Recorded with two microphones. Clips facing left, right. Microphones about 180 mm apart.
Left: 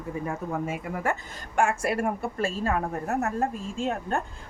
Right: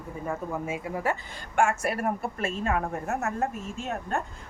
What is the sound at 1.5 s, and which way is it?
A woman's voice, 30° left (ahead or behind).